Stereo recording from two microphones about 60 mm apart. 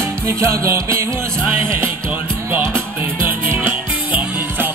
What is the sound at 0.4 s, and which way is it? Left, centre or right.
Music, right.